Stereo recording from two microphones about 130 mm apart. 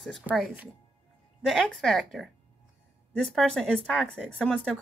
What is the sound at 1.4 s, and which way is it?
A woman's voice, centre (ahead or behind).